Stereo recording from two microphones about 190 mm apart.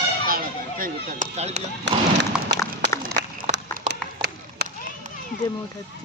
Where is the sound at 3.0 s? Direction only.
55° right (ahead or behind).